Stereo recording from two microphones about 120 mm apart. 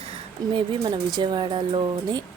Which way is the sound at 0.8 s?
35° right (ahead or behind).